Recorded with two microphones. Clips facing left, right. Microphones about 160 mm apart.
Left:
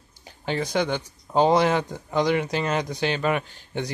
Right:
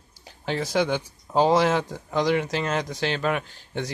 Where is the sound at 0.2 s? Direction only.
Centre (ahead or behind).